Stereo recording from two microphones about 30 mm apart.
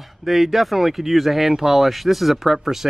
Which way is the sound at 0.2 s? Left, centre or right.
Centre.